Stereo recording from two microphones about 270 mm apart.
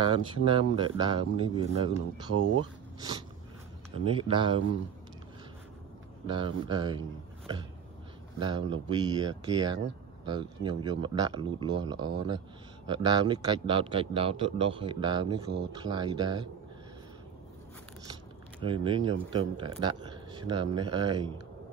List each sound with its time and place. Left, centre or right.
0.0 s a man's voice: centre
2.3 s speech: right
3.9 s a man's voice: centre
6.2 s a man's voice: centre
18.6 s speech: centre